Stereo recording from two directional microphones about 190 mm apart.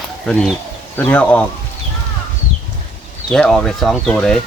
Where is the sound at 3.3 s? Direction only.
5° left (ahead or behind).